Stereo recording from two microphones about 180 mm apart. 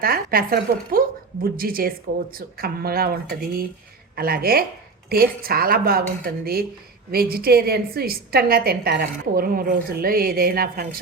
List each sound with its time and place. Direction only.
0.0 s a woman's voice: 55° right (ahead or behind)